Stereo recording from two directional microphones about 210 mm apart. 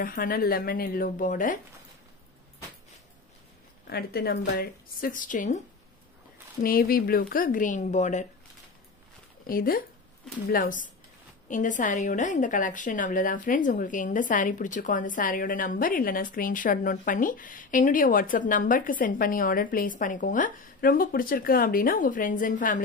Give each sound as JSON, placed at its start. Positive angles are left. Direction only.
{"t": 0.0, "sound": "speech", "side_deg": 45}
{"t": 3.8, "sound": "a woman's voice", "side_deg": 50}
{"t": 6.6, "sound": "a woman's voice", "side_deg": 45}
{"t": 9.5, "sound": "a woman's voice", "side_deg": 45}